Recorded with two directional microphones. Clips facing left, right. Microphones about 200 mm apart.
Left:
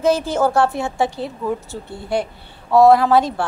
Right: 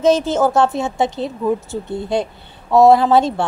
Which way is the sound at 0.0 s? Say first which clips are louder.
Right 3 dB; 20° right (ahead or behind).